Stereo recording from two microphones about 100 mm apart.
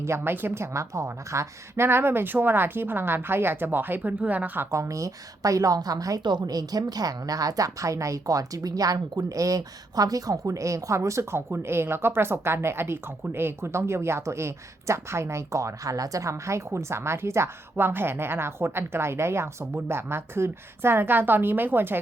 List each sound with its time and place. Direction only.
0.0 s a woman's voice: 25° right (ahead or behind)
4.7 s a woman's voice: 30° right (ahead or behind)